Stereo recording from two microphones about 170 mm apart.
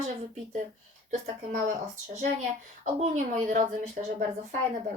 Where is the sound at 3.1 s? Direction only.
45° right (ahead or behind).